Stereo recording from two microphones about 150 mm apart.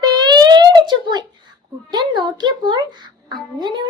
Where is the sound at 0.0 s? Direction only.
30° right (ahead or behind).